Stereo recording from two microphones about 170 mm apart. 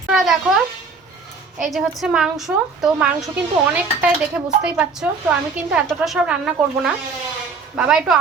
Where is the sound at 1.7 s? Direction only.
Centre (ahead or behind).